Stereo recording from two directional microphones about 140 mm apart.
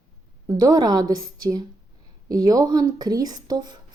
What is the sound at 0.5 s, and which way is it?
A woman's voice, 25° right (ahead or behind).